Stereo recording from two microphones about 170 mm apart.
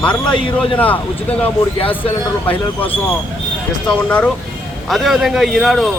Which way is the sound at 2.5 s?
10° left (ahead or behind).